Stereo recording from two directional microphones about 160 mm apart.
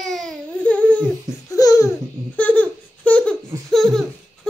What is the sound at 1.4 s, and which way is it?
Laughter, 20° left (ahead or behind).